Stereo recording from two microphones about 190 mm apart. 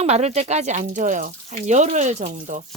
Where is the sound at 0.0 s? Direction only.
35° right (ahead or behind).